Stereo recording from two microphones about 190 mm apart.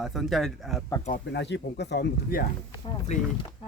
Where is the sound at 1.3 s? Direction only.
65° left (ahead or behind).